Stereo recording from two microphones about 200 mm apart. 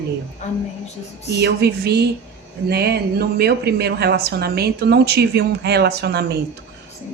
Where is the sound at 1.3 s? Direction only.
55° right (ahead or behind).